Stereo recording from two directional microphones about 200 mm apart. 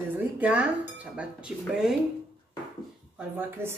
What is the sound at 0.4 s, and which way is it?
Speech, 5° right (ahead or behind).